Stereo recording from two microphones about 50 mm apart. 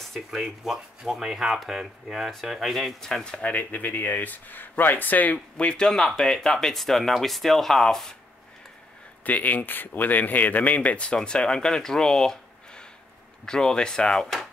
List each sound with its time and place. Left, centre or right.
0.0 s speech: centre
3.0 s speech: centre; by 5.4 s left
5.6 s speech: left
5.9 s speech: centre
9.2 s speech: left; by 14.2 s centre
14.2 s speech: centre